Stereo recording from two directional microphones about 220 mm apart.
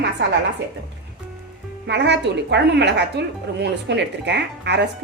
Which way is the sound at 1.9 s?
50° right (ahead or behind).